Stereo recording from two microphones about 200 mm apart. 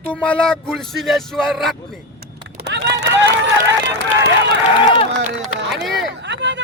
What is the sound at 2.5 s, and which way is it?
Run, 55° right (ahead or behind).